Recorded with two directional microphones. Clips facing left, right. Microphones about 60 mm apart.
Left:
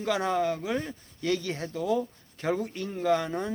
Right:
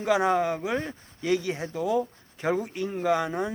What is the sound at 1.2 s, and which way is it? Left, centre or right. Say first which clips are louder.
Speech: right 3 dB; centre.